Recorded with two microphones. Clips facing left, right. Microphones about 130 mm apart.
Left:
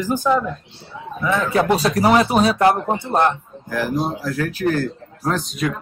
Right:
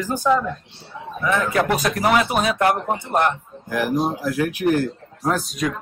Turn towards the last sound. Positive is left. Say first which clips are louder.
# left 1 dB
turn(degrees=0)  # may be behind; listen again after turning